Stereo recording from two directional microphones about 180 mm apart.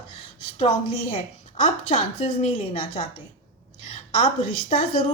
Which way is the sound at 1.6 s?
40° left (ahead or behind).